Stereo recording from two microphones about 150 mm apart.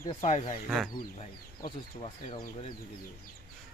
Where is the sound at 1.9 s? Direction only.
40° left (ahead or behind).